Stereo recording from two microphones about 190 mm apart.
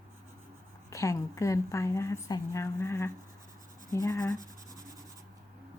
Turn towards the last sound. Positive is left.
turn(degrees=20)  # may be behind; listen again after turning